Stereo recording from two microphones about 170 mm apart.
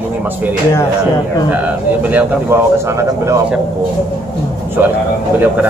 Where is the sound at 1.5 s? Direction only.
10° right (ahead or behind).